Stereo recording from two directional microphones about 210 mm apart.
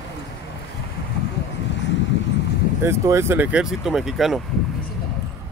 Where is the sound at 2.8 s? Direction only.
10° right (ahead or behind).